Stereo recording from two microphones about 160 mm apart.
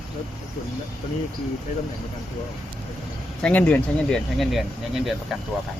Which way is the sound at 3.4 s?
10° left (ahead or behind).